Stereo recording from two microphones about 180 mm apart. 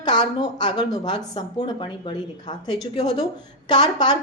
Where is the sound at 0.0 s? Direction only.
25° left (ahead or behind).